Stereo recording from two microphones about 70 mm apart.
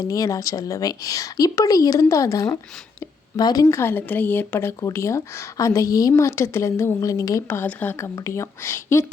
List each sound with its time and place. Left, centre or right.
0.0 s a woman's voice: left
3.3 s speech: left
3.7 s a woman's voice: left
4.9 s a woman's voice: left
6.1 s a woman's voice: left
7.0 s a woman's voice: left
7.4 s a woman's voice: left
7.9 s a woman's voice: left